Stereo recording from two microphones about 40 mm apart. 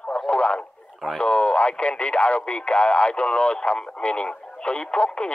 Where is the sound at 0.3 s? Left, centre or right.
Left.